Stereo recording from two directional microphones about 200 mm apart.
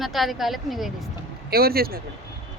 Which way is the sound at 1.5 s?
50° right (ahead or behind).